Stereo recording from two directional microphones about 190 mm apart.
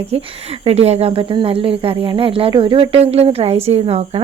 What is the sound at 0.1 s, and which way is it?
A woman's voice, 30° right (ahead or behind).